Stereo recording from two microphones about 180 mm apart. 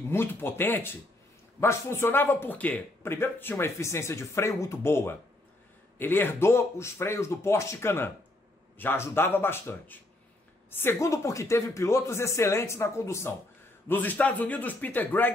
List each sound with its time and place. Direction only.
0.1 s a man's voice: 10° left (ahead or behind)